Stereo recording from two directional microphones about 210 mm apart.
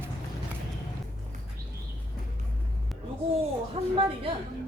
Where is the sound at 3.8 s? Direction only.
30° right (ahead or behind).